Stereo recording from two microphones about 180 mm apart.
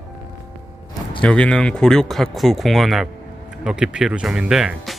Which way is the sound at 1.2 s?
5° left (ahead or behind).